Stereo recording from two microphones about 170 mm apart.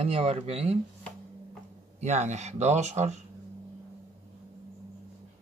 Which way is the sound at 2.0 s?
40° right (ahead or behind).